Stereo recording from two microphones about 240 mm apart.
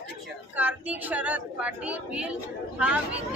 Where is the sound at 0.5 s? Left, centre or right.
Centre.